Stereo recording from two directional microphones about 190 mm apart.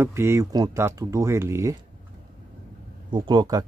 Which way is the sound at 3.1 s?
25° right (ahead or behind).